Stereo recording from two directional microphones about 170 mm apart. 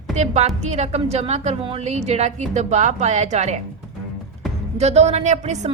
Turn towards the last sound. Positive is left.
turn(degrees=-40)  # may be behind; listen again after turning